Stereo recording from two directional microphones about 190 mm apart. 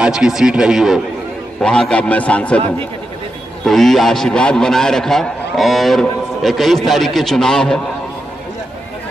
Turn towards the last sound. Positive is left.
turn(degrees=5)  # may be behind; listen again after turning